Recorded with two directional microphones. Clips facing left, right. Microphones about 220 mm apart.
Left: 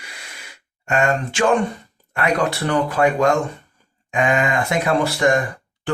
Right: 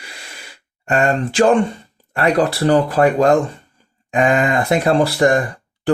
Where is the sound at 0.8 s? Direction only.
35° right (ahead or behind).